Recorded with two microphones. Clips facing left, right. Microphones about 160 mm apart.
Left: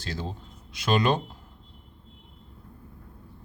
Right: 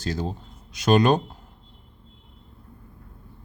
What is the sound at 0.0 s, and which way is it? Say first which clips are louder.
Speech: right 6 dB; 45° right (ahead or behind).